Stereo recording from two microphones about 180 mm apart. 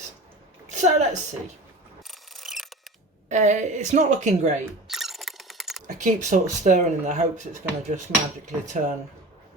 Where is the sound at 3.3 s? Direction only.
40° right (ahead or behind).